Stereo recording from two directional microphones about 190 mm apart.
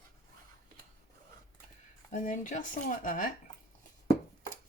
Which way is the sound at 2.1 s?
45° left (ahead or behind).